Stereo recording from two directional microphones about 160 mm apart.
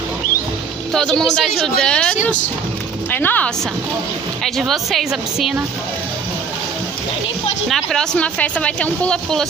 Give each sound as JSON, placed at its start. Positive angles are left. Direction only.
{"t": 0.9, "sound": "speech", "side_deg": 5}
{"t": 7.6, "sound": "speech", "side_deg": 5}